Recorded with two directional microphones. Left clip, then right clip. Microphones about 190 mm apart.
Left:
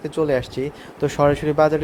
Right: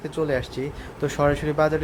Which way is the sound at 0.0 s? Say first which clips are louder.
Left 4 dB; 30° left (ahead or behind).